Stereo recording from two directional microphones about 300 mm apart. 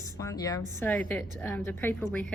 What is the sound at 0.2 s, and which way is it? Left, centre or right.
A woman's voice, centre.